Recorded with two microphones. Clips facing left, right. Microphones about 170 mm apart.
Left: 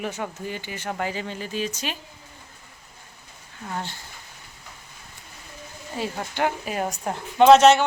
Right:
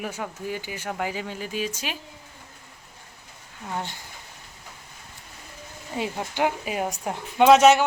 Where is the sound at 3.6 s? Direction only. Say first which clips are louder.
Even; 15° right (ahead or behind).